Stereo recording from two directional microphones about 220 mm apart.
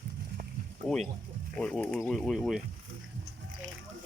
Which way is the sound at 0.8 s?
Centre (ahead or behind).